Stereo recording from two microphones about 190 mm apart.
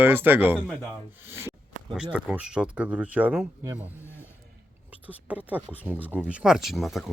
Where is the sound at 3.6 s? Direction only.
20° right (ahead or behind).